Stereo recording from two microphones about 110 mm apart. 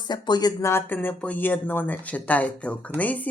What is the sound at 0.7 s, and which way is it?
Speech, 20° left (ahead or behind).